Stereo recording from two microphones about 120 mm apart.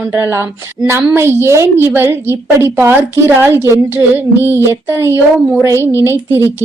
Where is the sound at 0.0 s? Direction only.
20° right (ahead or behind).